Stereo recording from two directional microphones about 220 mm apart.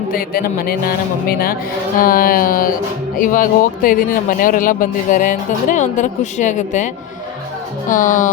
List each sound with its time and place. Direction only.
0.1 s speech: 40° left (ahead or behind)